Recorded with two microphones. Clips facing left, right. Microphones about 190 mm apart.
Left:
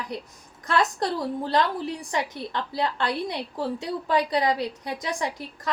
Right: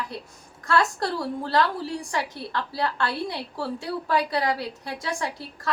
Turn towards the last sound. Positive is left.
turn(degrees=20)  # may be behind; listen again after turning